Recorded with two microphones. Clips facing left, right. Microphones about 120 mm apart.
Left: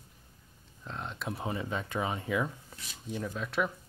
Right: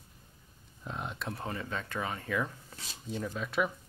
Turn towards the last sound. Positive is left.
turn(degrees=0)  # may be behind; listen again after turning